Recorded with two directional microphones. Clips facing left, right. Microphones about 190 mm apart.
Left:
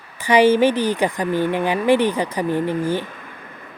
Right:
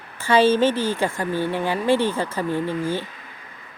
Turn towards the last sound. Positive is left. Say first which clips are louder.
# left 4 dB
turn(degrees=55)  # may be behind; listen again after turning